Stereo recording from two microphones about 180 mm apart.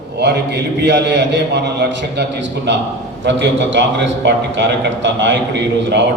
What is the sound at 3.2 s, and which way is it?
A man's voice, 85° right.